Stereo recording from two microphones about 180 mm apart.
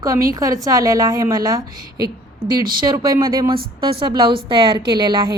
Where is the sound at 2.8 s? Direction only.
25° right (ahead or behind).